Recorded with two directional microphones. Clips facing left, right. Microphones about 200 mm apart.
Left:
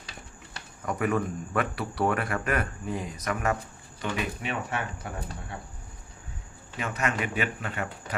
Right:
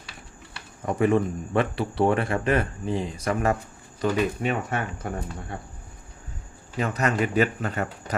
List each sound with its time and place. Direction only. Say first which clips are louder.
0.8 s speech: right 6 dB; 25° right (ahead or behind)
6.7 s speech: right 5 dB; 35° right (ahead or behind)